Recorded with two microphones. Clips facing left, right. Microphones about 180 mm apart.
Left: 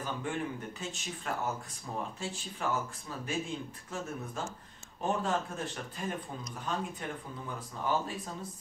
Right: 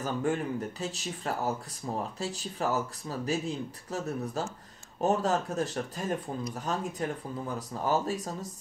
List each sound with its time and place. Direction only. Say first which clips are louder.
0.0 s speech: right 6 dB; 45° right (ahead or behind)